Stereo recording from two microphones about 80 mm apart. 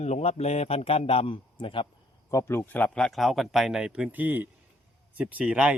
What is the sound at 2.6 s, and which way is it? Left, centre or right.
Speech, left.